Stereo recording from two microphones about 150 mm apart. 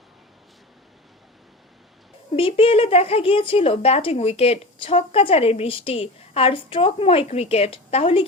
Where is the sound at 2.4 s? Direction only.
35° left (ahead or behind).